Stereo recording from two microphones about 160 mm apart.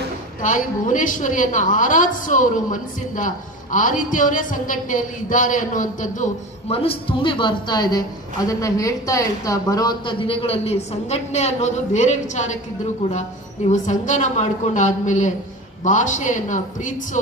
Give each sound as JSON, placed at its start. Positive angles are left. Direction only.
{"t": 0.4, "sound": "a woman's voice", "side_deg": 55}
{"t": 6.8, "sound": "speech", "side_deg": 35}
{"t": 13.7, "sound": "a woman's voice", "side_deg": 50}